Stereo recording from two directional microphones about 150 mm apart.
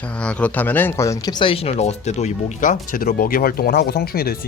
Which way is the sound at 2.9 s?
70° left (ahead or behind).